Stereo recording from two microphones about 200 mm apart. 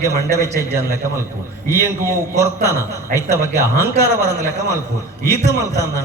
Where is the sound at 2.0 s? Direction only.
15° right (ahead or behind).